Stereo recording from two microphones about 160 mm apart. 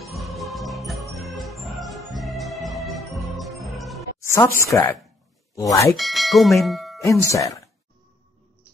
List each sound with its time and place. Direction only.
0.0 s music: centre (ahead or behind)
4.2 s a sound: 15° left (ahead or behind)
4.6 s a woman's voice: 20° left (ahead or behind)
5.9 s speech: centre (ahead or behind)
7.0 s speech: 20° left (ahead or behind)